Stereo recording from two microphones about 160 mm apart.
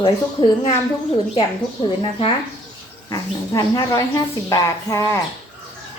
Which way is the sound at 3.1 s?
25° left (ahead or behind).